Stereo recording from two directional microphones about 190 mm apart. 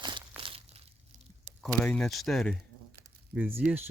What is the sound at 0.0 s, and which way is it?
Crushing, 25° right (ahead or behind).